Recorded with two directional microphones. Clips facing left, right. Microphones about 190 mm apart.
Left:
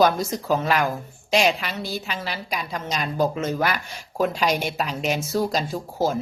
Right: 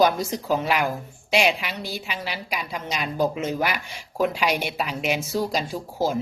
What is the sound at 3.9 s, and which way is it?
Speech, 45° left (ahead or behind).